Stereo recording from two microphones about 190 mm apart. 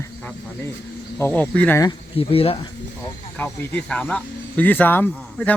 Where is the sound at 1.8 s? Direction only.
25° left (ahead or behind).